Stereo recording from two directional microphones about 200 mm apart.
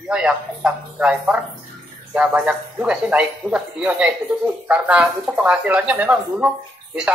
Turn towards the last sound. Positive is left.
turn(degrees=-5)  # may be behind; listen again after turning